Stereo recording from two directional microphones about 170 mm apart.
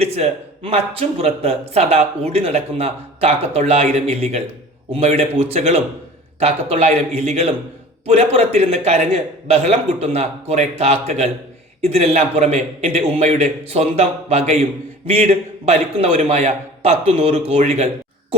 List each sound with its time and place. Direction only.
0.0 s a man's voice: 35° right (ahead or behind)